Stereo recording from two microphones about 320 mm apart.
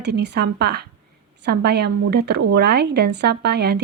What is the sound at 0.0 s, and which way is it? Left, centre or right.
Speech, right.